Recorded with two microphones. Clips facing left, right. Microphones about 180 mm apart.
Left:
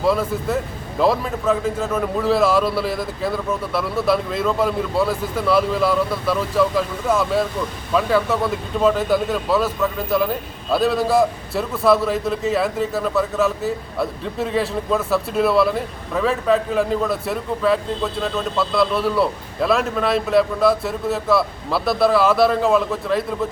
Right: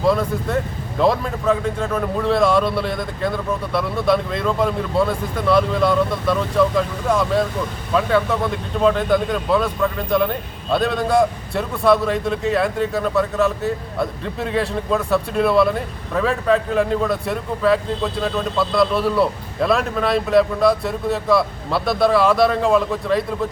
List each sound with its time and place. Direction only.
0.0 s speech: 5° left (ahead or behind)